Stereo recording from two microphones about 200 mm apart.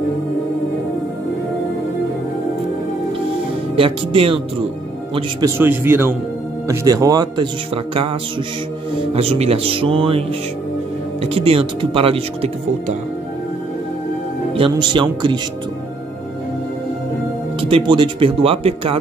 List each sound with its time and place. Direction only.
3.7 s speech: 25° right (ahead or behind)
5.6 s a man's voice: 10° right (ahead or behind); by 10.2 s 25° right (ahead or behind)
11.2 s speech: 30° right (ahead or behind)
14.5 s speech: 25° right (ahead or behind)
17.6 s speech: 25° right (ahead or behind)